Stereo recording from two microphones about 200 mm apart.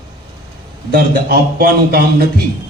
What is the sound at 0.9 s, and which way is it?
A man's voice, 50° right (ahead or behind).